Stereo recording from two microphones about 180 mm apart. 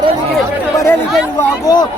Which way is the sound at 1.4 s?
20° left (ahead or behind).